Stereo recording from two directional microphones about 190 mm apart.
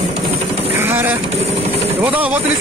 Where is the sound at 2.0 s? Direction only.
10° right (ahead or behind).